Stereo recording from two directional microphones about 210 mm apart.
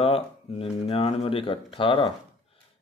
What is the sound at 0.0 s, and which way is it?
Speech, 25° left (ahead or behind).